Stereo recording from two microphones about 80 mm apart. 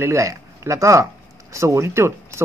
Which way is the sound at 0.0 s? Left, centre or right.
Right.